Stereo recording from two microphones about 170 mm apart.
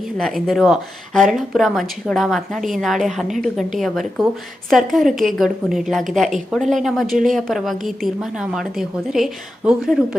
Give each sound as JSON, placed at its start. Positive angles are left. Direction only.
{"t": 0.0, "sound": "speech", "side_deg": 0}